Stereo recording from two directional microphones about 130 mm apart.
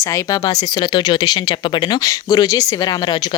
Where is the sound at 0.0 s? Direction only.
25° left (ahead or behind).